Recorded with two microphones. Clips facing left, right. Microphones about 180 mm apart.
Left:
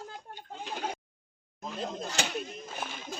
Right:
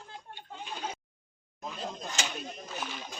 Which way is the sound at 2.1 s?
55° left (ahead or behind).